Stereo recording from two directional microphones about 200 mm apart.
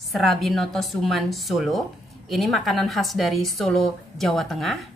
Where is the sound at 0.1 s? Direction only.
Centre (ahead or behind).